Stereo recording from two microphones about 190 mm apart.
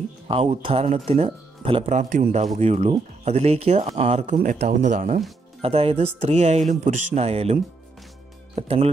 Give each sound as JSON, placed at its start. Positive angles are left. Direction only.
{"t": 0.3, "sound": "speech", "side_deg": -30}
{"t": 5.6, "sound": "speech", "side_deg": -30}
{"t": 8.5, "sound": "speech", "side_deg": -30}